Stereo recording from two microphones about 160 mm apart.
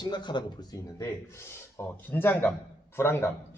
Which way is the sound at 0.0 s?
30° left (ahead or behind).